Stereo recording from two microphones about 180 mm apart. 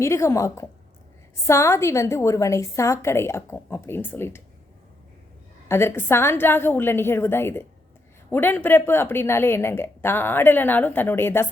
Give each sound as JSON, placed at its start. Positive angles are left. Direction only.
{"t": 0.0, "sound": "a woman's voice", "side_deg": 15}
{"t": 5.6, "sound": "a woman's voice", "side_deg": 15}